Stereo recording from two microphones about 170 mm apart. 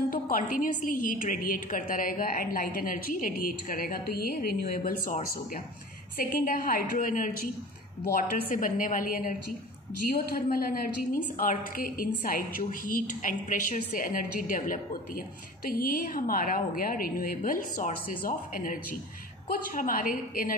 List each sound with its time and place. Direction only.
0.1 s a woman's voice: 50° left (ahead or behind)